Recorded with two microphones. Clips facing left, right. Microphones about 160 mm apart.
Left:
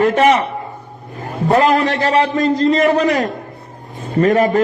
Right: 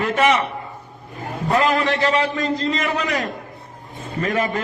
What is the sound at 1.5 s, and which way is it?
A man's voice, 40° left (ahead or behind).